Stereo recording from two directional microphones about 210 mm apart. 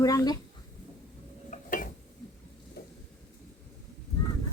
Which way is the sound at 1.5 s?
40° left (ahead or behind).